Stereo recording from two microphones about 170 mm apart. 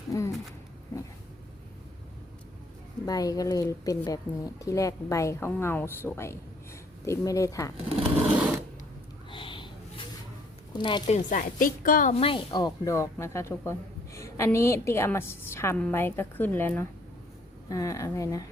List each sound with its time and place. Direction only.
0.1 s speech: 15° left (ahead or behind)
3.1 s a woman's voice: 20° left (ahead or behind)
7.9 s a sound: 5° right (ahead or behind)
9.3 s a sound: 30° left (ahead or behind)
10.7 s a woman's voice: 25° left (ahead or behind)
11.3 s a woman's voice: 50° left (ahead or behind)
12.1 s a woman's voice: 30° left (ahead or behind)